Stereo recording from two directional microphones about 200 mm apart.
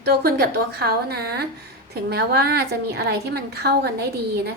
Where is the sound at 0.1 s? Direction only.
50° right (ahead or behind).